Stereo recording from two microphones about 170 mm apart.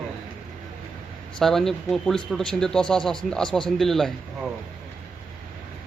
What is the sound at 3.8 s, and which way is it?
Speech, centre (ahead or behind).